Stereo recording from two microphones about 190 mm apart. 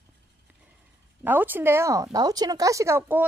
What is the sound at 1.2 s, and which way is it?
A woman's voice, 10° right (ahead or behind).